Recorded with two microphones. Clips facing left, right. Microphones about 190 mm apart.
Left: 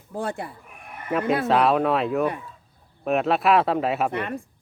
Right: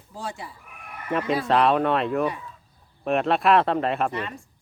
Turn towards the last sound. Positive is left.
turn(degrees=55)  # may be behind; listen again after turning